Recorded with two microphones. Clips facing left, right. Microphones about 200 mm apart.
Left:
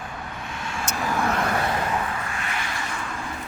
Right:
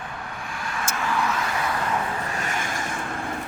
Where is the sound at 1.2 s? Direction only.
55° left (ahead or behind).